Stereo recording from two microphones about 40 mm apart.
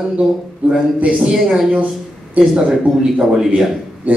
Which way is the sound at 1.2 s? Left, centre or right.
Centre.